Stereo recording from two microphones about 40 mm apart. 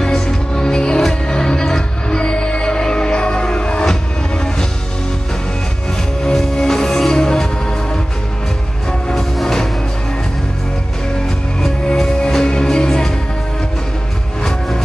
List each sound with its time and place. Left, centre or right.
0.0 s music: centre
6.3 s music: centre
9.1 s music: centre
11.2 s music: centre